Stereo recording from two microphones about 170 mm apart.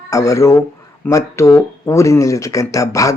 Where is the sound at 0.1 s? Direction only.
20° left (ahead or behind).